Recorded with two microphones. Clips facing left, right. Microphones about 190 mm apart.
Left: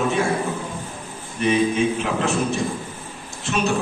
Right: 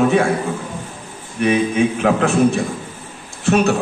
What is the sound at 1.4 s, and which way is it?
Speech, 60° right (ahead or behind).